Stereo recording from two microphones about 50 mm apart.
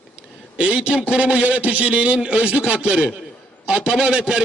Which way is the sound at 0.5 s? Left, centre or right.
Right.